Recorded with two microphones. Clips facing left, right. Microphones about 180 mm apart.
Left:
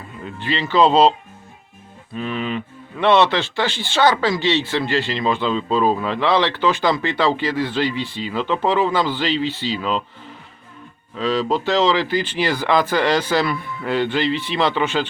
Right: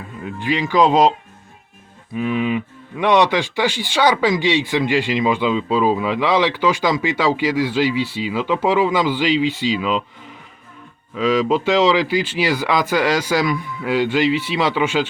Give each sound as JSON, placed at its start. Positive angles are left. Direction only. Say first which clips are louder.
{"t": 0.3, "sound": "speech", "louder": "right 3 dB", "side_deg": -10}
{"t": 2.1, "sound": "speech", "louder": "right 4 dB", "side_deg": -10}
{"t": 11.5, "sound": "speech", "louder": "right 1 dB", "side_deg": -10}